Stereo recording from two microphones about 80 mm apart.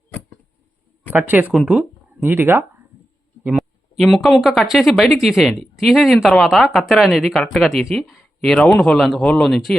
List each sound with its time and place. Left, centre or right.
1.1 s speech: right
1.5 s speech: centre
2.2 s speech: right
3.4 s a sound: centre
4.1 s speech: centre